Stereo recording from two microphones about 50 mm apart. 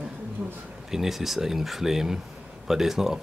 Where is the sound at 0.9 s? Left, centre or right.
Centre.